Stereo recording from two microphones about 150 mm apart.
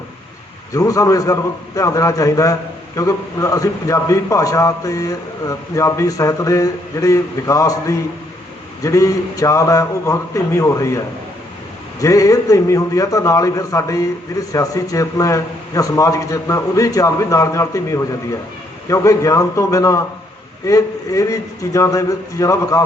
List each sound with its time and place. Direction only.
0.7 s a man's voice: 20° left (ahead or behind)